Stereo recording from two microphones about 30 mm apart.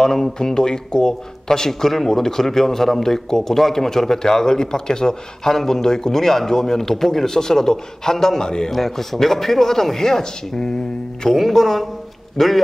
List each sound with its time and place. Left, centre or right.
0.0 s speech: centre
8.7 s speech: centre
11.3 s speech: centre